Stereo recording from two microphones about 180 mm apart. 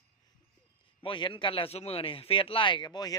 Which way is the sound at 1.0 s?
30° left (ahead or behind).